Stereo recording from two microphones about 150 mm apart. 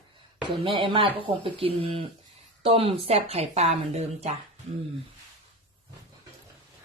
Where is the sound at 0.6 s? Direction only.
35° right (ahead or behind).